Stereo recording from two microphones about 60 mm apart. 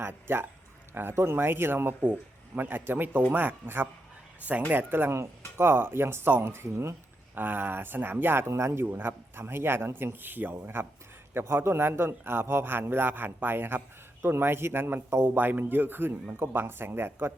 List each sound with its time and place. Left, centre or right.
0.0 s a man's voice: right
7.3 s a man's voice: right
8.8 s a man's voice: right